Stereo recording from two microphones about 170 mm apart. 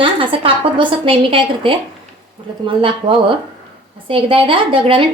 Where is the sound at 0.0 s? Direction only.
30° right (ahead or behind).